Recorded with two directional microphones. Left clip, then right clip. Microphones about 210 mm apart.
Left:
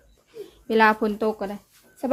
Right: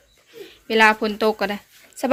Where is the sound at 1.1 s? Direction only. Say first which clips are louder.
Right 5 dB; 5° right (ahead or behind).